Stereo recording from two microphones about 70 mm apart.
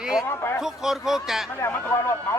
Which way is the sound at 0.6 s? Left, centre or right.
Centre.